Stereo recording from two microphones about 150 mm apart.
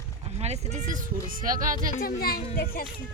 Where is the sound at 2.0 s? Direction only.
90° left.